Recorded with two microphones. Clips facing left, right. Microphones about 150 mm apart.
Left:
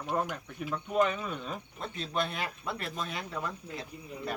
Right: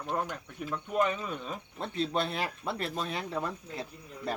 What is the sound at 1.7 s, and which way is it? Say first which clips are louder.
Speech: right 3 dB; 35° right (ahead or behind).